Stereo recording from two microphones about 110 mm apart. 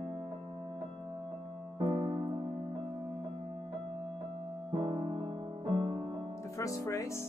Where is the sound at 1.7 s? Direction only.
45° right (ahead or behind).